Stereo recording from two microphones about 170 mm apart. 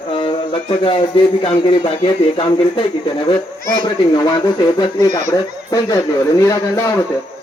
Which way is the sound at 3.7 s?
20° left (ahead or behind).